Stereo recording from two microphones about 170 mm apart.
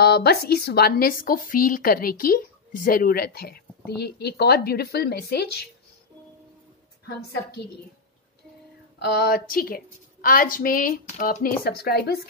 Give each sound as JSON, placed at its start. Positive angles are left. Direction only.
{"t": 0.0, "sound": "a woman's voice", "side_deg": 70}
{"t": 9.0, "sound": "a woman's voice", "side_deg": 65}